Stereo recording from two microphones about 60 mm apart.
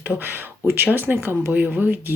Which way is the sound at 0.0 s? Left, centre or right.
Right.